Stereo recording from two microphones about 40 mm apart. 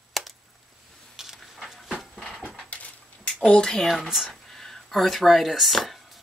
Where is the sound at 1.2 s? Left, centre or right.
Centre.